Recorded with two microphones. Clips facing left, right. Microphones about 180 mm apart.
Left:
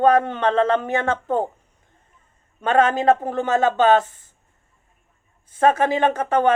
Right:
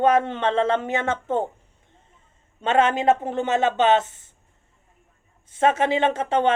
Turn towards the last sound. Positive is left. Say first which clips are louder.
# left 2 dB
turn(degrees=-25)  # may be behind; listen again after turning